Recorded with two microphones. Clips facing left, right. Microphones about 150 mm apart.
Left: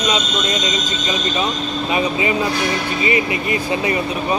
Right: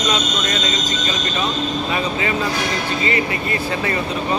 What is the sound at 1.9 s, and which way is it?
Speech, 20° left (ahead or behind).